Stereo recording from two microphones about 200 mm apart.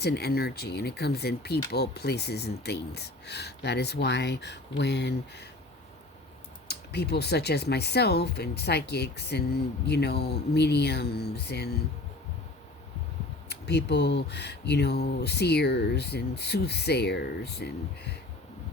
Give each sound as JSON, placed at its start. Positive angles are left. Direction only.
{"t": 0.0, "sound": "speech", "side_deg": 55}
{"t": 6.7, "sound": "speech", "side_deg": 55}
{"t": 13.5, "sound": "speech", "side_deg": 55}